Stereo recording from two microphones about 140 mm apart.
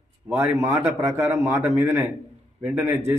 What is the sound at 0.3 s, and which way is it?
A man's voice, 15° right (ahead or behind).